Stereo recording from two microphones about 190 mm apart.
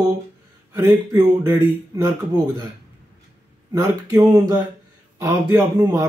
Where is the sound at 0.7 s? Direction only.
15° right (ahead or behind).